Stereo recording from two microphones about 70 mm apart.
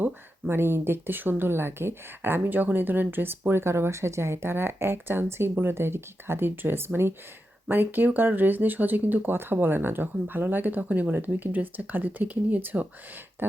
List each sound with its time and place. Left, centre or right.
0.0 s speech: right